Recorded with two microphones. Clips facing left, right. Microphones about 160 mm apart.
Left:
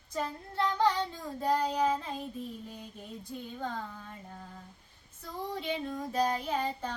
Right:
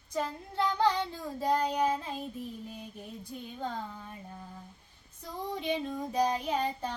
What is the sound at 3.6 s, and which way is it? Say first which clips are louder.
Child singing: right 2 dB; 15° right (ahead or behind).